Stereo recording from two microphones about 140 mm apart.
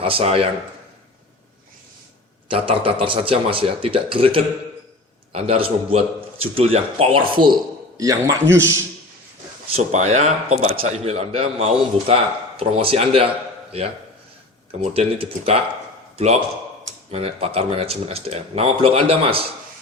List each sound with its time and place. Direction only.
0.0 s a man's voice: 45° right (ahead or behind)
2.5 s a man's voice: 40° right (ahead or behind)
7.9 s speech: 25° right (ahead or behind)
9.7 s a man's voice: 55° right (ahead or behind)
14.8 s a man's voice: 45° right (ahead or behind)